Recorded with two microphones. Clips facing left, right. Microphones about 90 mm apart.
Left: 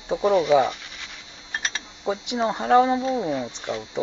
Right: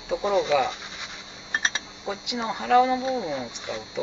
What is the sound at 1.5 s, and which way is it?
Mechanisms, 20° right (ahead or behind).